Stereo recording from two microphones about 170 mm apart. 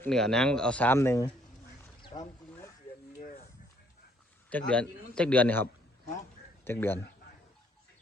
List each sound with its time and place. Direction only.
0.0 s speech: 5° left (ahead or behind)
3.2 s a sound: 55° left (ahead or behind)
4.4 s speech: 10° left (ahead or behind)
6.7 s speech: 15° left (ahead or behind)